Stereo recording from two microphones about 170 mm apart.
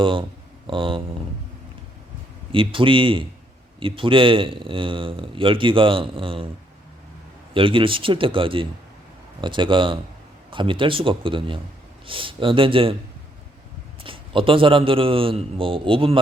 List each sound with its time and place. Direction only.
0.0 s a man's voice: 30° right (ahead or behind)
2.5 s a man's voice: 30° right (ahead or behind)
7.5 s a man's voice: 30° right (ahead or behind)
14.0 s a man's voice: 30° right (ahead or behind)